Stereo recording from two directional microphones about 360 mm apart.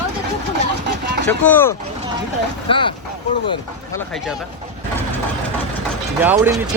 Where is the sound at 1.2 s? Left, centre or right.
Centre.